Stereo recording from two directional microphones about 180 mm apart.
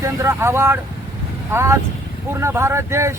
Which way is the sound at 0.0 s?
15° right (ahead or behind).